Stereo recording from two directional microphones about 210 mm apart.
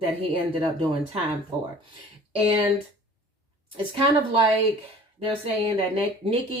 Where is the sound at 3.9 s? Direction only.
25° right (ahead or behind).